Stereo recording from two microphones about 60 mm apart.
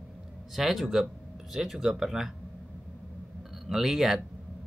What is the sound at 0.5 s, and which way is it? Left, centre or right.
Speech, centre.